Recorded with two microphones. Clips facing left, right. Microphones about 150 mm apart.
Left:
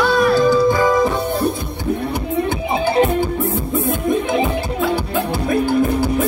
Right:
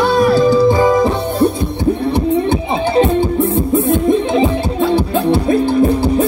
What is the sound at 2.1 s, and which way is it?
Music, 30° right (ahead or behind).